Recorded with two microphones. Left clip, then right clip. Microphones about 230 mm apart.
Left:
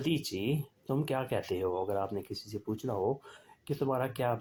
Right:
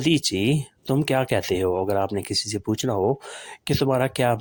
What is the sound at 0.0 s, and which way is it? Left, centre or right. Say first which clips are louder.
Speech: right 12 dB; right.